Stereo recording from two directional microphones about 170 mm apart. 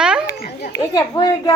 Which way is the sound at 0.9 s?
25° left (ahead or behind).